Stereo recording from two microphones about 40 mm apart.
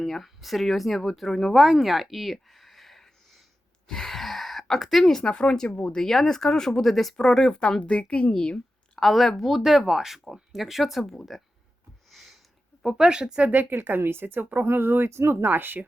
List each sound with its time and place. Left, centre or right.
0.0 s speech: centre
1.5 s speech: centre
2.3 s a sound: centre
5.6 s a woman's voice: left
5.9 s speech: centre
7.5 s a woman's voice: left
9.0 s speech: centre
9.6 s speech: centre
12.1 s a sound: centre
13.0 s speech: centre
13.5 s speech: right
13.8 s speech: right
15.4 s speech: right